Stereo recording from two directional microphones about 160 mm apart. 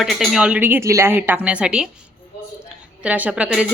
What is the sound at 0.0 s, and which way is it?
Speech, centre (ahead or behind).